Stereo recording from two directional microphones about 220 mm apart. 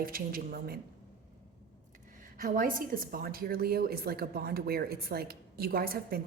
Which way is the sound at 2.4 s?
40° right (ahead or behind).